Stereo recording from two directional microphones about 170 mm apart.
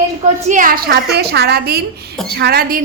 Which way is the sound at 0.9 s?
75° right (ahead or behind).